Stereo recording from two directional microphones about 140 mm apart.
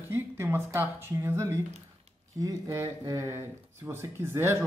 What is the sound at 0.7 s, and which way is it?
Speech, 15° right (ahead or behind).